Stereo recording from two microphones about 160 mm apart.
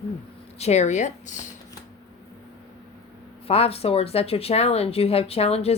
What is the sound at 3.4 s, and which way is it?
A woman's voice, 40° left (ahead or behind).